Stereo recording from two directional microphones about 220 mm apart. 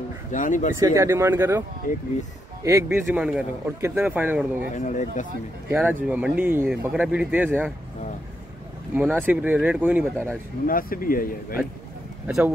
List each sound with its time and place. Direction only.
0.3 s speech: 35° left (ahead or behind)
0.7 s a man's voice: 15° right (ahead or behind)
2.6 s a man's voice: 15° right (ahead or behind)
4.7 s speech: 35° left (ahead or behind)
5.7 s a man's voice: 10° right (ahead or behind)
8.9 s a man's voice: 10° right (ahead or behind)
10.1 s speech: 5° left (ahead or behind)
10.7 s speech: 40° left (ahead or behind)
12.3 s speech: centre (ahead or behind)